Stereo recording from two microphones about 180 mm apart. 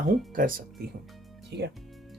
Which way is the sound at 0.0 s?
50° right (ahead or behind).